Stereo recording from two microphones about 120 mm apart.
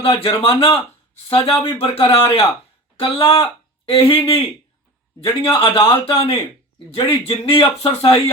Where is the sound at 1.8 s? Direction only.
50° left (ahead or behind).